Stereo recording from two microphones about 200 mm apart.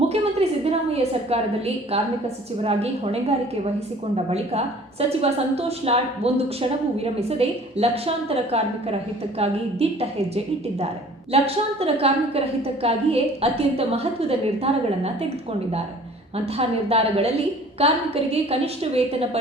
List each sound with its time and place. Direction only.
0.1 s a sound: 30° right (ahead or behind)
1.3 s a woman's voice: 30° right (ahead or behind)
16.6 s a woman's voice: 30° right (ahead or behind)